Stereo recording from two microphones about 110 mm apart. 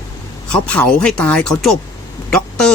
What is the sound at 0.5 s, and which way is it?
Speech, 10° left (ahead or behind).